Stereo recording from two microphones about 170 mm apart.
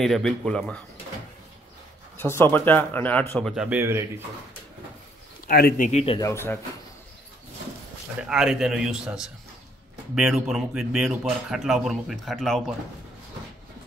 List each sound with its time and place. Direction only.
0.0 s a man's voice: centre (ahead or behind)
2.1 s speech: 15° left (ahead or behind); by 4.0 s 10° right (ahead or behind)
5.5 s speech: 60° left (ahead or behind)
5.9 s speech: 40° left (ahead or behind)
6.1 s speech: 15° left (ahead or behind)
8.2 s a man's voice: 5° right (ahead or behind)